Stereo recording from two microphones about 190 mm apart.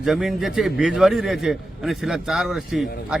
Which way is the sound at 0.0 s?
Centre (ahead or behind).